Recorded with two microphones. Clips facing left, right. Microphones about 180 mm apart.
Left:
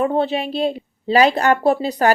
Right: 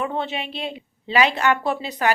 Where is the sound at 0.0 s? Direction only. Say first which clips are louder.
Left 8 dB; 35° left (ahead or behind).